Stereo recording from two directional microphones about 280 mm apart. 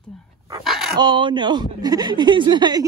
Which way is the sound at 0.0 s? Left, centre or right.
Centre.